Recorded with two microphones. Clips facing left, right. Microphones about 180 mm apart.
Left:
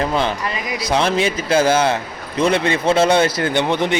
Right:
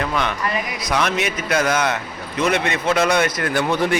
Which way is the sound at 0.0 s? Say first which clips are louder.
Left 3 dB; 30° left (ahead or behind).